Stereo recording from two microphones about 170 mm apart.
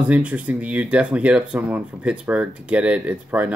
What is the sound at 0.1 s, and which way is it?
Speech, 5° right (ahead or behind).